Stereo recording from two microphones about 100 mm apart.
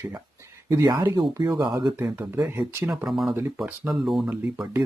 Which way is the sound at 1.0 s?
40° right (ahead or behind).